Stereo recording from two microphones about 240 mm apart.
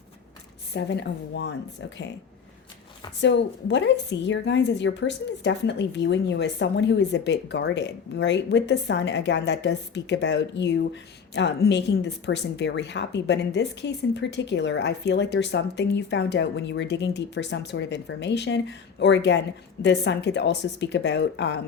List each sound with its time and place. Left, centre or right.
0.7 s a woman's voice: left
3.2 s a woman's voice: left